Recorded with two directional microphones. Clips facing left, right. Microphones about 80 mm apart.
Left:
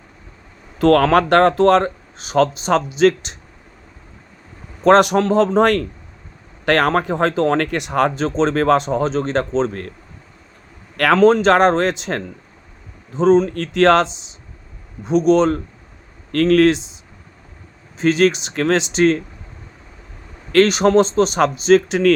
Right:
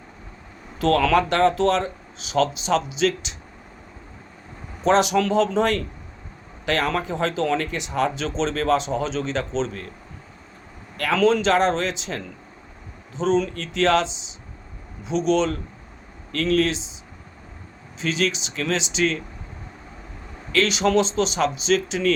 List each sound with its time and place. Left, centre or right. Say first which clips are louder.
0.8 s speech: left 6 dB; left
4.8 s a man's voice: left 6 dB; left
5.2 s speech: left 6 dB; left
10.9 s speech: left 7 dB; left
18.0 s speech: left 9 dB; left
20.5 s speech: left 7 dB; left